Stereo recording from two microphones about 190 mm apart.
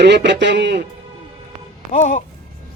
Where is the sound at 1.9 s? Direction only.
35° left (ahead or behind).